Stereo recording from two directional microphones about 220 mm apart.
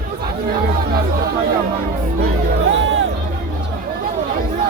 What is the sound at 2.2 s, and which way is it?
Music, 55° right (ahead or behind).